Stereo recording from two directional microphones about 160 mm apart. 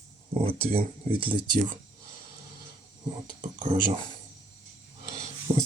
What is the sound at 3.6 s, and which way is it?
Speech, 35° right (ahead or behind).